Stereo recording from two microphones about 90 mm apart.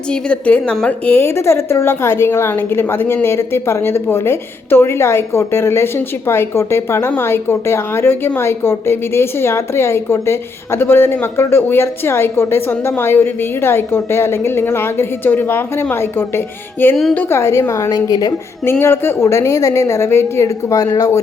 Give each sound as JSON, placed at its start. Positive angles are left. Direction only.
{"t": 0.1, "sound": "a woman's voice", "side_deg": 15}
{"t": 1.2, "sound": "a woman's voice", "side_deg": 30}
{"t": 18.6, "sound": "a woman's voice", "side_deg": 25}